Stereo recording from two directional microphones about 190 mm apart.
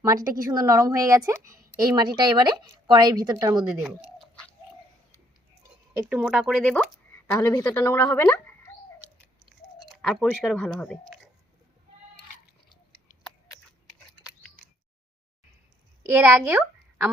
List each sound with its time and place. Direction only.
0.0 s a woman's voice: 15° right (ahead or behind)
3.7 s speech: 5° right (ahead or behind)
6.0 s speech: 5° right (ahead or behind)
7.3 s speech: 15° left (ahead or behind)
10.0 s speech: 5° left (ahead or behind)
16.1 s speech: 10° right (ahead or behind)